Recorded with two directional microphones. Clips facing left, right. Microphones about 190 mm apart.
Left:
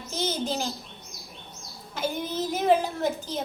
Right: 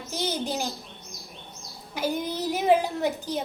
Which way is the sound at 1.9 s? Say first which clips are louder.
Right 1 dB; 15° right (ahead or behind).